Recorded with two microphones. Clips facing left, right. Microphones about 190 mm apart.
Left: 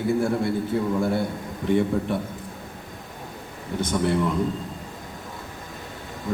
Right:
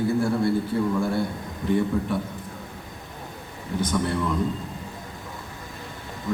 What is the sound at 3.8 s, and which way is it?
Speech, 25° left (ahead or behind).